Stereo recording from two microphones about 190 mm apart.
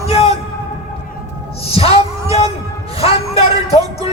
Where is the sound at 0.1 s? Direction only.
30° left (ahead or behind).